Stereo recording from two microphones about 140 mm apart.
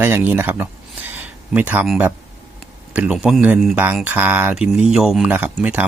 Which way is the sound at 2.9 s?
5° right (ahead or behind).